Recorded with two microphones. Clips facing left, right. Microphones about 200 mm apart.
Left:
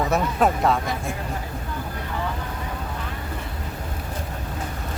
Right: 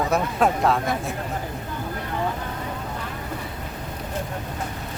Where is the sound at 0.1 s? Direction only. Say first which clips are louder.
Even; centre (ahead or behind).